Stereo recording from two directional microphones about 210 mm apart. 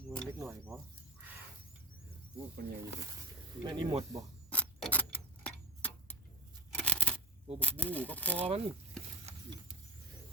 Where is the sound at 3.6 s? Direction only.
20° right (ahead or behind).